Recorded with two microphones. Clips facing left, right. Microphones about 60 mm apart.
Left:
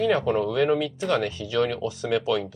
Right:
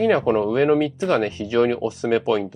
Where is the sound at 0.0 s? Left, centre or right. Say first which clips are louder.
Right 4 dB; right.